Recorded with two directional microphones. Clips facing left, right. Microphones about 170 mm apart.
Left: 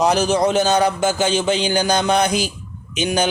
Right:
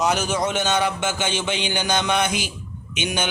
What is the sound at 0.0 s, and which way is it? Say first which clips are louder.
A man's voice: left 6 dB; 35° left (ahead or behind).